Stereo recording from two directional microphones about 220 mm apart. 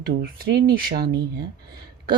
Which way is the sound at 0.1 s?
45° right (ahead or behind).